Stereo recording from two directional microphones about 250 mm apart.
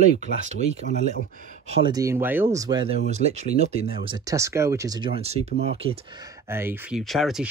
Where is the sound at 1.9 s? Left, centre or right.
Centre.